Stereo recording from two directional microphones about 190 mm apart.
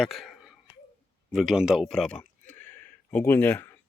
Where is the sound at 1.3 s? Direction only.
5° right (ahead or behind).